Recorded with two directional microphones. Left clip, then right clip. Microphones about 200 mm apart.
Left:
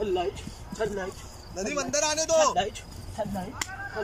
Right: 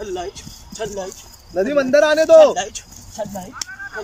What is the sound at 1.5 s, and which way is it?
A man's voice, 45° right (ahead or behind).